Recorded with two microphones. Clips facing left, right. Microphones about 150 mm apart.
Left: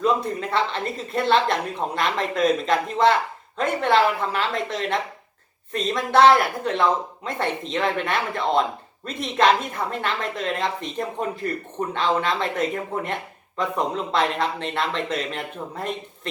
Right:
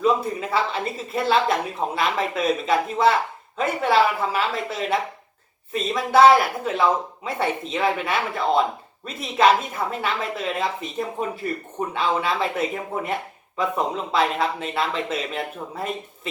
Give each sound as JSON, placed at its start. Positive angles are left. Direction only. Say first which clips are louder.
{"t": 0.0, "sound": "speech", "louder": "right 1 dB", "side_deg": -5}